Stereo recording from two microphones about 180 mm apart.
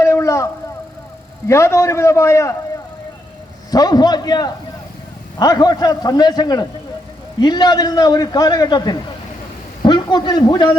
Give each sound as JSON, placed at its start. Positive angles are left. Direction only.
{"t": 0.0, "sound": "a sound", "side_deg": 15}
{"t": 1.5, "sound": "a man's voice", "side_deg": 15}
{"t": 3.7, "sound": "a man's voice", "side_deg": 20}